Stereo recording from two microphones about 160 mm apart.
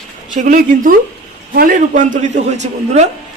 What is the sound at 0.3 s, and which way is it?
A man's voice, 55° right (ahead or behind).